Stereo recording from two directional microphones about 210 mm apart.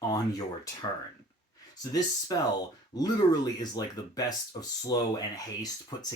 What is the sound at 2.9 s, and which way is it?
Speech, 20° left (ahead or behind).